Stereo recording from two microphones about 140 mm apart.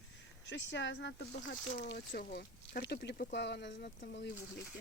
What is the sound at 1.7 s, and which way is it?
Speech, 90° left.